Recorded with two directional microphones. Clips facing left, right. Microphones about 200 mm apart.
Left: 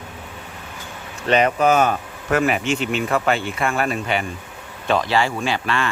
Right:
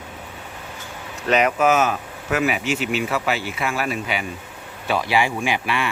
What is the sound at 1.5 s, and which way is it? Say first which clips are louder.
Speech: left 1 dB; 35° left (ahead or behind).